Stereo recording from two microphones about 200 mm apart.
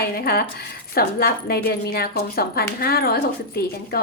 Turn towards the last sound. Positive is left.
turn(degrees=50)  # may be behind; listen again after turning